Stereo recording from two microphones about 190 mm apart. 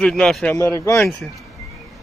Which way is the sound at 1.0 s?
Centre (ahead or behind).